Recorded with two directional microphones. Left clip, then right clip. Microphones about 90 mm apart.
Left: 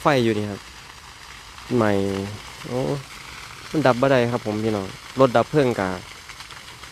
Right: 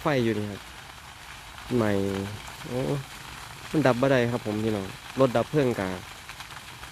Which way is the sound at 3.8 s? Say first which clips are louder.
Left 5 dB; 30° left (ahead or behind).